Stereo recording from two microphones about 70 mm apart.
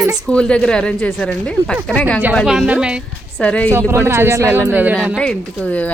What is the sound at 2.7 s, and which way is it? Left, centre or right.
Speech, centre.